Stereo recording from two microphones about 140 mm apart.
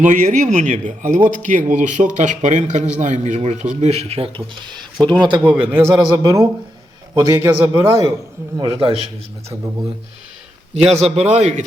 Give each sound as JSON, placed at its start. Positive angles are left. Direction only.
{"t": 0.0, "sound": "speech", "side_deg": -65}
{"t": 5.4, "sound": "speech", "side_deg": -15}
{"t": 5.9, "sound": "a man's voice", "side_deg": -25}
{"t": 8.5, "sound": "speech", "side_deg": -35}
{"t": 10.8, "sound": "speech", "side_deg": -50}